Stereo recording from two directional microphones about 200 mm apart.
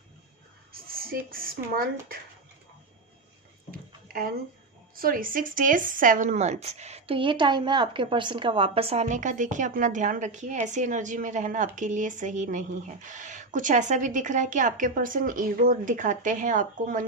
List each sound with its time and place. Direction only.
0.7 s speech: 45° right (ahead or behind)
3.7 s a sound: 45° right (ahead or behind)
4.9 s speech: 45° right (ahead or behind)